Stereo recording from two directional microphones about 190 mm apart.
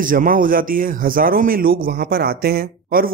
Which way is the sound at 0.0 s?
45° right (ahead or behind).